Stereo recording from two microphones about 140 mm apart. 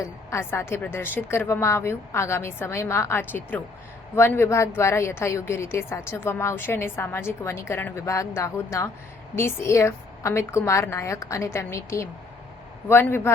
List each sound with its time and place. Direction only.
0.0 s a woman's voice: 20° left (ahead or behind)